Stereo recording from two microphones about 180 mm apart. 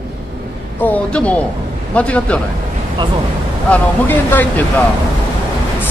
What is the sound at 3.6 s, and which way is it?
Speech, 10° left (ahead or behind).